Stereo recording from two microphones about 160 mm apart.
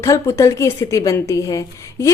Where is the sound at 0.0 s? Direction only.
15° left (ahead or behind).